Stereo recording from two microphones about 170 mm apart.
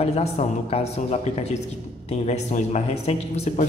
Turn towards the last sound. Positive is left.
turn(degrees=45)  # may be behind; listen again after turning